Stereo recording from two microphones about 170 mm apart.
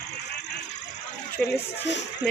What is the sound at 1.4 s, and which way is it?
Speech, 5° left (ahead or behind).